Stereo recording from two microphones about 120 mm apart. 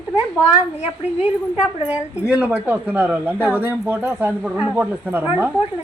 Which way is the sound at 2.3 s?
10° right (ahead or behind).